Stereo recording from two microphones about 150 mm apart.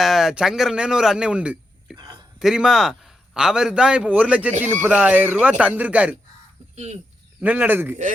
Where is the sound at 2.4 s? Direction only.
5° right (ahead or behind).